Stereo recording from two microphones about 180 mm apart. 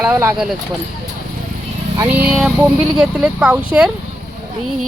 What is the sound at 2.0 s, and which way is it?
Speech, 10° right (ahead or behind).